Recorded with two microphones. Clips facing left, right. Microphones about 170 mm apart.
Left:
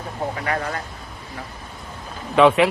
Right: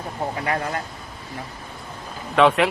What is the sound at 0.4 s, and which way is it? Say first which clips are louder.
Speech: right 1 dB; 25° right (ahead or behind).